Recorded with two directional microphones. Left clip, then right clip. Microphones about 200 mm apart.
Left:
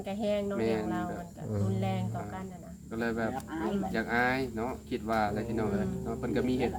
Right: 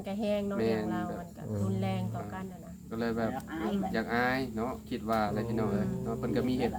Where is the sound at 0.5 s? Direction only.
15° right (ahead or behind).